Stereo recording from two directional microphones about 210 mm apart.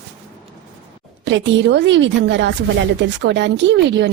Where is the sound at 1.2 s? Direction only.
60° right (ahead or behind).